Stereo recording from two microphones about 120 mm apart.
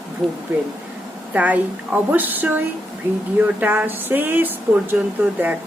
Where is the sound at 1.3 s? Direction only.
15° right (ahead or behind).